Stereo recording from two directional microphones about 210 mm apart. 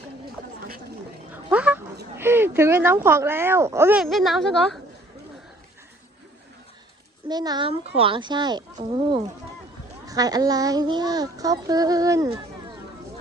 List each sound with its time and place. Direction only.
1.3 s a sound: 5° right (ahead or behind)
2.1 s speech: 10° right (ahead or behind)
7.3 s a child's voice: 20° right (ahead or behind)
10.1 s speech: 15° right (ahead or behind)